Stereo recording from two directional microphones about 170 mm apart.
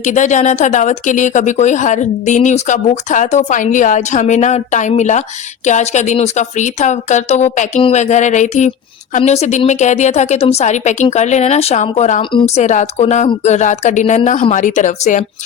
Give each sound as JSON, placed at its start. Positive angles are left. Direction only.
{"t": 0.0, "sound": "speech", "side_deg": 45}
{"t": 7.8, "sound": "a sound", "side_deg": 30}
{"t": 8.0, "sound": "speech", "side_deg": 45}